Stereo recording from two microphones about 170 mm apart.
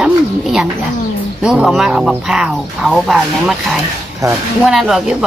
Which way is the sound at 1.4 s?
5° right (ahead or behind).